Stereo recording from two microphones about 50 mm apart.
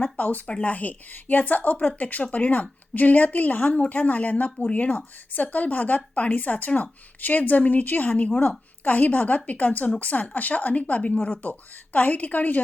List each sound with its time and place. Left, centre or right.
0.2 s a woman's voice: left